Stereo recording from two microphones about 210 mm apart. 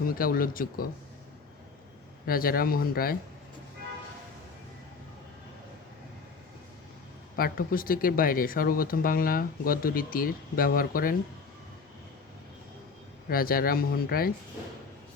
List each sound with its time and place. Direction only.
0.1 s speech: 45° left (ahead or behind)
2.2 s speech: 45° left (ahead or behind)
7.3 s speech: 45° left (ahead or behind)
13.2 s speech: 45° left (ahead or behind)